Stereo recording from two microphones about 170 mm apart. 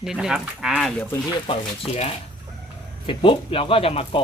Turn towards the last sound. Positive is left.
turn(degrees=35)  # may be behind; listen again after turning